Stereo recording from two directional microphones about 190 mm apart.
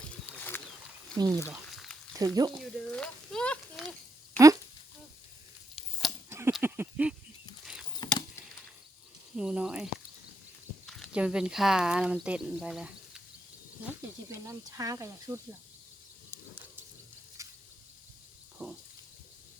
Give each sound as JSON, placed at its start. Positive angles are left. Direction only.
{"t": 0.3, "sound": "wild animals", "side_deg": 10}
{"t": 1.1, "sound": "speech", "side_deg": -20}
{"t": 1.5, "sound": "frying", "side_deg": 0}
{"t": 2.1, "sound": "speech", "side_deg": -20}
{"t": 2.6, "sound": "speech", "side_deg": 5}
{"t": 5.7, "sound": "a sound", "side_deg": 0}
{"t": 6.5, "sound": "a sound", "side_deg": -10}
{"t": 7.6, "sound": "bird flight", "side_deg": -5}
{"t": 9.3, "sound": "speech", "side_deg": -5}
{"t": 13.8, "sound": "speech", "side_deg": -15}
{"t": 17.4, "sound": "a sound", "side_deg": -15}
{"t": 18.6, "sound": "a sound", "side_deg": -10}